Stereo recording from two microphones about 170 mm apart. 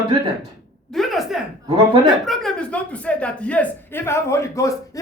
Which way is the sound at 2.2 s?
5° left (ahead or behind).